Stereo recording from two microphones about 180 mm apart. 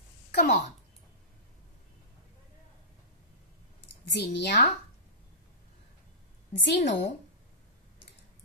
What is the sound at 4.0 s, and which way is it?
Speech, 70° left (ahead or behind).